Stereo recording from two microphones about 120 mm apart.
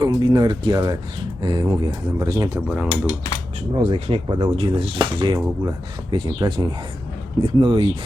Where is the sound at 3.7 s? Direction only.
50° right (ahead or behind).